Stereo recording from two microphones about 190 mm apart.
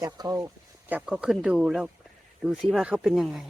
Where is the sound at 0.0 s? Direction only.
20° right (ahead or behind).